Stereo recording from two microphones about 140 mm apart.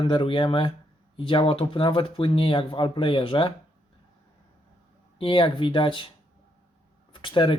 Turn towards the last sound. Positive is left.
turn(degrees=35)  # may be behind; listen again after turning